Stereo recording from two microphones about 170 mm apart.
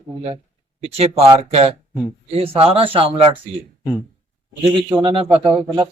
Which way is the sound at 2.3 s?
35° right (ahead or behind).